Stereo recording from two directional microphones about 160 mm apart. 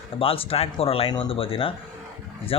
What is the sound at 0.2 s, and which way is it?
Speech, 35° left (ahead or behind).